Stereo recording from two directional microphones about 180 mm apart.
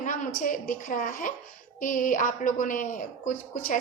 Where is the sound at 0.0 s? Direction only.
45° left (ahead or behind).